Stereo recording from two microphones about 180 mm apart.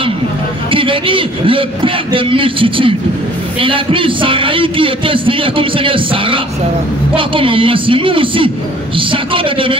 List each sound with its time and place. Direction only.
0.7 s a man's voice: 30° right (ahead or behind)